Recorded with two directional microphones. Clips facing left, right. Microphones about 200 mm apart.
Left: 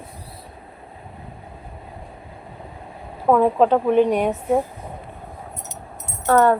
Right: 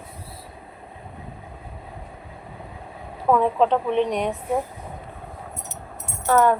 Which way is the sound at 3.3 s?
35° left (ahead or behind).